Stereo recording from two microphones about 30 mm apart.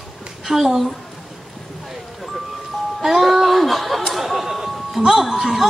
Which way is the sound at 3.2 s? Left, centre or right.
Centre.